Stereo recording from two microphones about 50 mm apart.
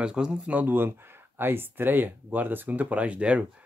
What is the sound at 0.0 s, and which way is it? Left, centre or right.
Speech, centre.